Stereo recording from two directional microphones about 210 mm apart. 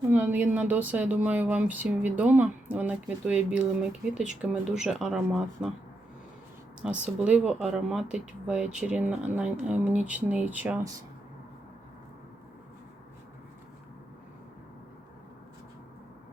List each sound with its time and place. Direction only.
0.1 s speech: 10° right (ahead or behind)
6.8 s speech: 5° right (ahead or behind)